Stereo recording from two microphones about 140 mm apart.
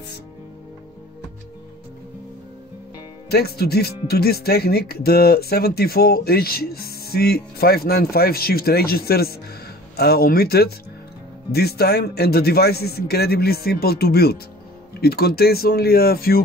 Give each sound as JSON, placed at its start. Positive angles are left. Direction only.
{"t": 3.5, "sound": "speech", "side_deg": 90}
{"t": 12.0, "sound": "speech", "side_deg": 90}